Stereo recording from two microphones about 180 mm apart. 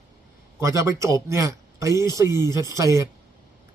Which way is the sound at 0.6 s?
15° right (ahead or behind).